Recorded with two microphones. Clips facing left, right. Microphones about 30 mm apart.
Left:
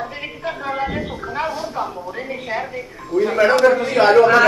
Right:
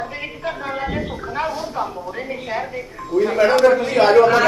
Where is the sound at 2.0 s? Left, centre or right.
Centre.